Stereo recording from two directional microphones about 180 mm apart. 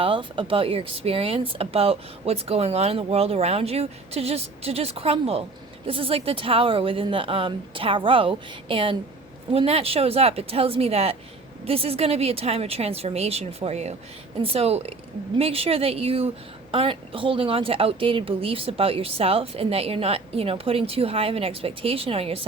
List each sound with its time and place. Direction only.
0.0 s a woman's voice: 30° right (ahead or behind)